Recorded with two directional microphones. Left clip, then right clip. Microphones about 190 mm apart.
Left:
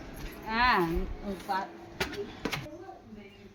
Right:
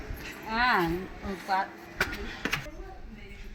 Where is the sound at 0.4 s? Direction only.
30° right (ahead or behind).